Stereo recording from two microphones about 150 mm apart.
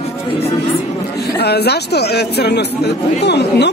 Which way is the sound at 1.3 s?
90° left.